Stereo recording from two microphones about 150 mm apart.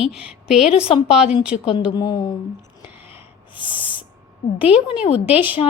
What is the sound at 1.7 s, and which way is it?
Speech, 30° left (ahead or behind).